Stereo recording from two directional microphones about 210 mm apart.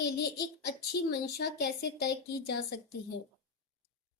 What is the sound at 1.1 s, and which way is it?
A woman's voice, 50° left (ahead or behind).